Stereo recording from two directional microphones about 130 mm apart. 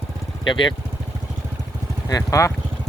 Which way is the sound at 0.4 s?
40° left (ahead or behind).